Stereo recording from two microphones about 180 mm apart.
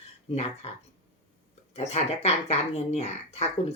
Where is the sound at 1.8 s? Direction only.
35° left (ahead or behind).